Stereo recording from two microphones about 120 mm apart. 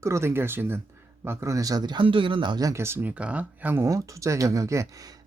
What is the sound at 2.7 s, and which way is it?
Speech, 20° right (ahead or behind).